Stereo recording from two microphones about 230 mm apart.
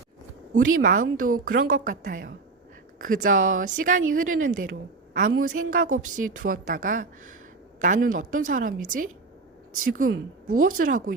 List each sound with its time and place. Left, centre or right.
0.5 s a woman's voice: right